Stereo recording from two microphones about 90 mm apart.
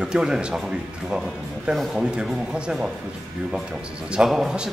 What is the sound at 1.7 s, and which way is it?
Speech, 10° right (ahead or behind).